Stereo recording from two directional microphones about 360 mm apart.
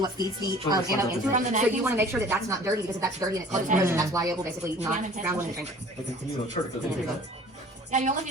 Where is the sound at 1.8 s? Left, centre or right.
Centre.